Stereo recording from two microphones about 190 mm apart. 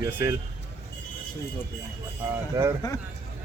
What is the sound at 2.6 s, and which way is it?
Speech, 15° right (ahead or behind).